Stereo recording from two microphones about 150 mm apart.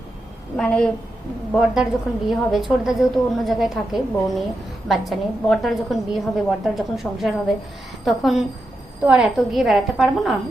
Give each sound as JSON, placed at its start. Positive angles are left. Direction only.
{"t": 0.5, "sound": "a woman's voice", "side_deg": 5}
{"t": 1.7, "sound": "a woman's voice", "side_deg": -5}